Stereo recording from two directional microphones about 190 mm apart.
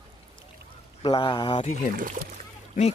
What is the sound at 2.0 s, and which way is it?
Speech, 45° right (ahead or behind).